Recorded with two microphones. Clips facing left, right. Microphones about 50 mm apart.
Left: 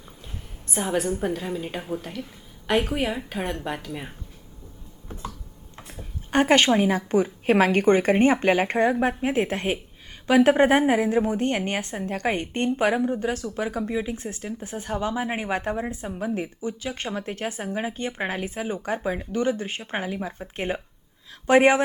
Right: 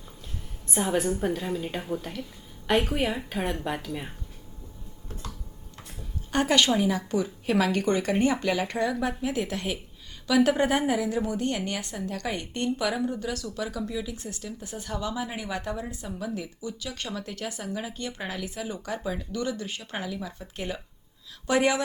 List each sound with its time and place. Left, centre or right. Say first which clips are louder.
0.7 s a woman's voice: left 1 dB; centre
5.7 s speech: left 2 dB; left